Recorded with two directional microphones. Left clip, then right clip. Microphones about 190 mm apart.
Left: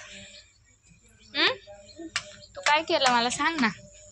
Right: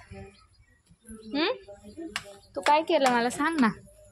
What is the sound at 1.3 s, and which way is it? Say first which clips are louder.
Speech: left 3 dB; 40° right (ahead or behind).